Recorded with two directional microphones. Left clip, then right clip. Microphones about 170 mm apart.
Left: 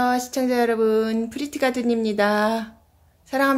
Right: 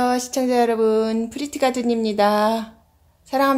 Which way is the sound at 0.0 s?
Centre (ahead or behind).